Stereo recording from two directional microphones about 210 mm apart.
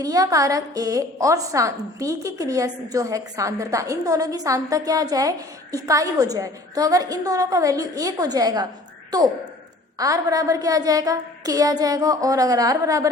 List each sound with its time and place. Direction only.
0.0 s a woman's voice: 15° right (ahead or behind)